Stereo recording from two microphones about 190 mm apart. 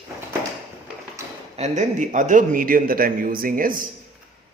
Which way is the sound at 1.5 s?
35° right (ahead or behind).